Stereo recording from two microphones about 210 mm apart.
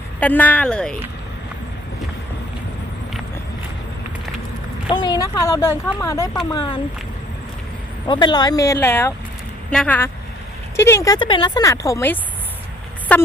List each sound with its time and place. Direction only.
0.2 s a woman's voice: 10° left (ahead or behind)
4.9 s a woman's voice: 20° left (ahead or behind)
8.0 s a woman's voice: 20° left (ahead or behind)